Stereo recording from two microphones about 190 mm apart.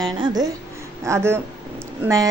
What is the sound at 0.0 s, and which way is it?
A woman's voice, 20° right (ahead or behind).